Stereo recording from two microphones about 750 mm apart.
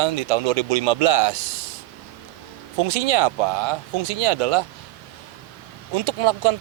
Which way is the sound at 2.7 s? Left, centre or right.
Right.